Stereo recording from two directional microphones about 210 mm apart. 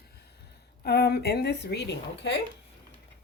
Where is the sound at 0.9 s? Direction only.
50° left (ahead or behind).